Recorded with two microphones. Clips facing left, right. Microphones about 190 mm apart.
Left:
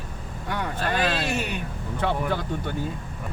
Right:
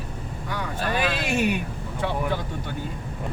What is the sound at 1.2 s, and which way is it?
Speech, 10° right (ahead or behind).